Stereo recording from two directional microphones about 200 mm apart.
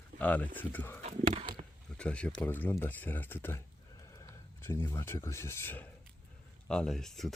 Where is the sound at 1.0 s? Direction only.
30° right (ahead or behind).